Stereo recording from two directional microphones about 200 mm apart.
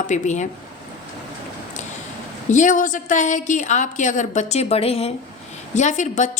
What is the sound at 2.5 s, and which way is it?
A woman's voice, 40° left (ahead or behind).